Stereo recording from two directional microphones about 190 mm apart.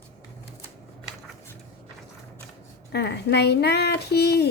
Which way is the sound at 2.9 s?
60° left (ahead or behind).